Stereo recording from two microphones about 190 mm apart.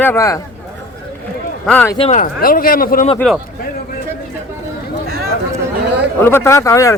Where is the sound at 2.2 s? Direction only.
50° left (ahead or behind).